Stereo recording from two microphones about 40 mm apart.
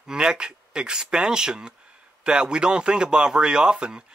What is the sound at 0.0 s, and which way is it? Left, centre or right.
Speech, centre.